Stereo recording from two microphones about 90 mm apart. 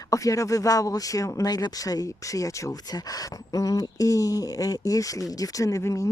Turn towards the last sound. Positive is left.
turn(degrees=35)  # may be behind; listen again after turning